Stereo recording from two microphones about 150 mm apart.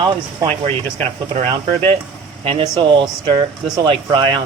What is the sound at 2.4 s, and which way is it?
Speech, 35° right (ahead or behind).